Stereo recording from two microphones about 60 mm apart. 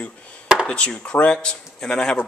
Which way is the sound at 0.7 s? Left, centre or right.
Centre.